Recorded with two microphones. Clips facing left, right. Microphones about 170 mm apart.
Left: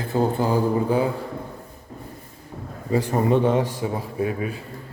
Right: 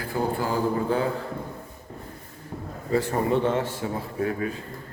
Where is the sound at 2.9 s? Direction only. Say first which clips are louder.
Left 3 dB; 15° left (ahead or behind).